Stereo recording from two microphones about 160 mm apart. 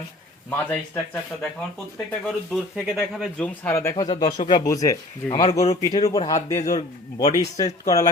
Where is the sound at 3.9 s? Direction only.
25° left (ahead or behind).